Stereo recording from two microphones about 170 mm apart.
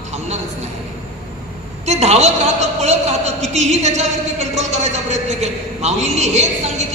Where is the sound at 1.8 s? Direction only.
40° right (ahead or behind).